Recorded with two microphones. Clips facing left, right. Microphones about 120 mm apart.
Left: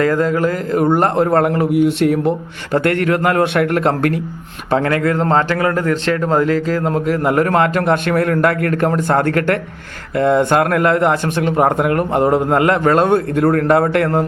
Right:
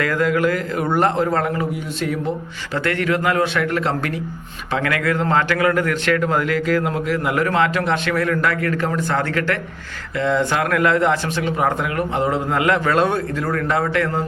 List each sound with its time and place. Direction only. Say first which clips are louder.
0.0 s a man's voice: left 3 dB; 35° left (ahead or behind)
0.9 s speech: left 1 dB; 50° left (ahead or behind)
2.7 s speech: left 5 dB; 50° left (ahead or behind)
4.7 s a man's voice: left 5 dB; 35° left (ahead or behind); by 14.3 s 55° left (ahead or behind)